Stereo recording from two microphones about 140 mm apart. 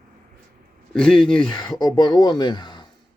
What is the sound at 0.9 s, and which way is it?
Speech, 5° left (ahead or behind).